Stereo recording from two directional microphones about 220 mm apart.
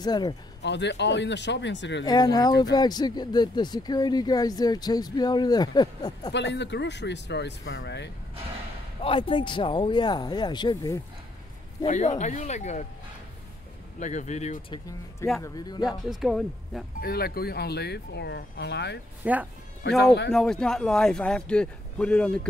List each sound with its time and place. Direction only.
0.0 s speech: 20° left (ahead or behind)
0.6 s speech: 50° left (ahead or behind)
2.0 s speech: 20° left (ahead or behind)
6.3 s speech: 55° left (ahead or behind)
9.0 s speech: 25° left (ahead or behind)
11.8 s speech: 30° left (ahead or behind)
13.9 s speech: 35° left (ahead or behind)
15.4 s speech: 15° left (ahead or behind)
16.1 s speech: centre (ahead or behind)
17.0 s speech: 45° left (ahead or behind)
19.2 s speech: 5° right (ahead or behind)